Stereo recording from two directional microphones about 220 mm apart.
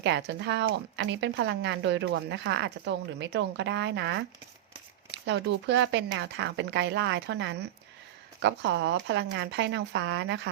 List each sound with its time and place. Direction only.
0.0 s a woman's voice: 50° right (ahead or behind)